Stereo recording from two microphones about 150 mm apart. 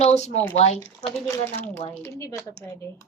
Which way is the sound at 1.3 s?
15° left (ahead or behind).